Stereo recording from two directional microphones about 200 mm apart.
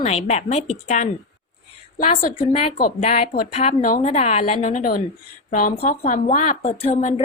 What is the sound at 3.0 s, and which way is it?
A woman's voice, 35° left (ahead or behind).